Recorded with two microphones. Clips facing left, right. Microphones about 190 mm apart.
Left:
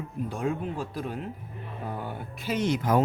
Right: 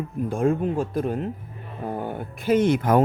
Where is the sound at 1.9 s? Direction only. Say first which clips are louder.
Right 6 dB; 50° right (ahead or behind).